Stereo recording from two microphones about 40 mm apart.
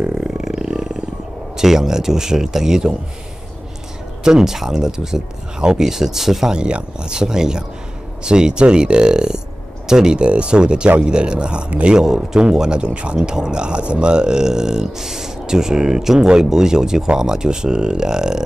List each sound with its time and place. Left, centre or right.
0.0 s roar: right
1.6 s speech: centre
4.2 s speech: centre
6.5 s speech: right